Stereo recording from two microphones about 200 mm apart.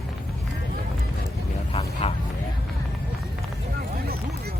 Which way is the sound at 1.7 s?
30° left (ahead or behind).